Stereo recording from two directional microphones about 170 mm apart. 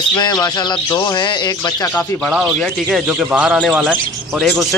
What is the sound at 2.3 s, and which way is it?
A man's voice, 5° right (ahead or behind).